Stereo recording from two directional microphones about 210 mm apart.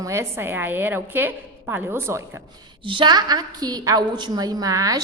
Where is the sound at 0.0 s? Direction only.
15° right (ahead or behind).